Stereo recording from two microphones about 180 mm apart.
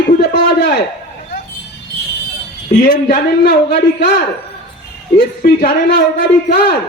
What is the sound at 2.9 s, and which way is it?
A man's voice, 55° left (ahead or behind).